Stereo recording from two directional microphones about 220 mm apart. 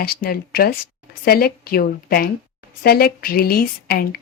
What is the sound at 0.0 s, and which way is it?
A woman's voice, 45° left (ahead or behind).